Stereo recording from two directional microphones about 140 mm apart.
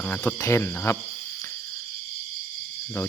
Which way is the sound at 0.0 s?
10° left (ahead or behind).